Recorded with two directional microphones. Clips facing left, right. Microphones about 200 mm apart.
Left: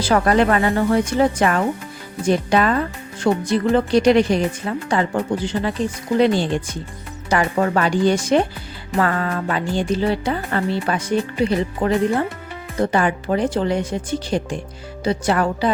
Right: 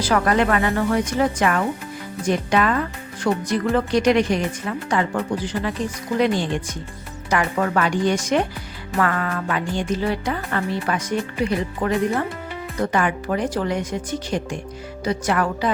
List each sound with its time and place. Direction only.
0.0 s speech: 30° left (ahead or behind)